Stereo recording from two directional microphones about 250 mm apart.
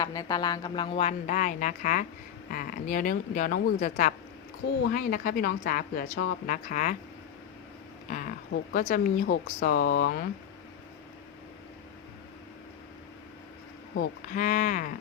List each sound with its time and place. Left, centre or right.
0.0 s speech: centre; by 6.9 s left
8.7 s speech: left
13.9 s speech: left